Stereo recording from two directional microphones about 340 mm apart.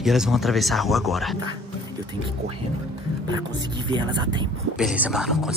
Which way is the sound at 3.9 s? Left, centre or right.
Centre.